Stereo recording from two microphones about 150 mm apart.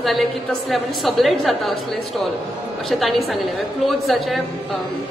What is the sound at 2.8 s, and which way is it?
A woman's voice, centre (ahead or behind).